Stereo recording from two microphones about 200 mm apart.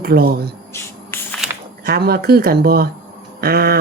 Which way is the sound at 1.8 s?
50° right (ahead or behind).